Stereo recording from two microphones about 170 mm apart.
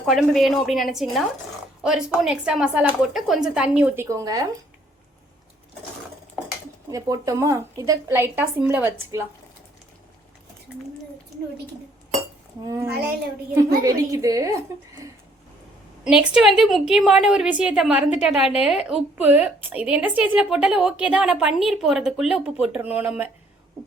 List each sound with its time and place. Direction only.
0.0 s speech: centre (ahead or behind); by 4.4 s 20° right (ahead or behind)
6.9 s a woman's voice: 20° right (ahead or behind)
12.6 s a woman's voice: 15° right (ahead or behind)
16.0 s a woman's voice: 5° right (ahead or behind)